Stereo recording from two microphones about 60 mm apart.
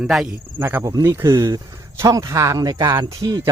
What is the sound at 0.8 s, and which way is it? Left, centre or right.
Speech, right.